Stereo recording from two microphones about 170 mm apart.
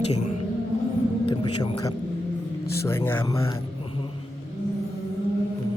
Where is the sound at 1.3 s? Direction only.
25° left (ahead or behind).